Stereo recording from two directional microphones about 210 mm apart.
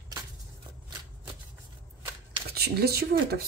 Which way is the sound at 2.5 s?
50° right (ahead or behind).